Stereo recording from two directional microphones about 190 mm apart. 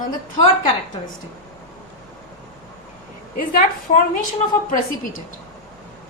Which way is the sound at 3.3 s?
50° left (ahead or behind).